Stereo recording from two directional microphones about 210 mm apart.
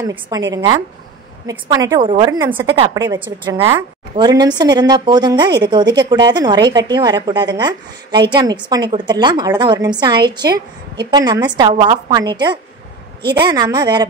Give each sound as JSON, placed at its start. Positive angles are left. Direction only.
{"t": 0.3, "sound": "a woman's voice", "side_deg": -15}
{"t": 1.5, "sound": "a woman's voice", "side_deg": -15}